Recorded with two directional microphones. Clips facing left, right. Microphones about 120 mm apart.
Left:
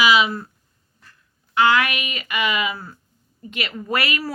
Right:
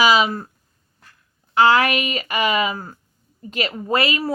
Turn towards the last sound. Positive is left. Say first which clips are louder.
# right 4 dB
turn(degrees=-25)  # may be behind; listen again after turning